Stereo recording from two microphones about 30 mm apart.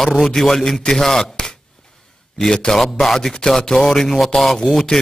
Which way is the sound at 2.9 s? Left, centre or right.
Centre.